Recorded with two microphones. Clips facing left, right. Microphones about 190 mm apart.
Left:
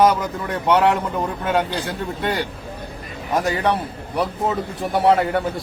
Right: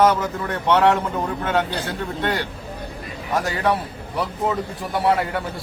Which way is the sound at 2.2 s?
15° left (ahead or behind).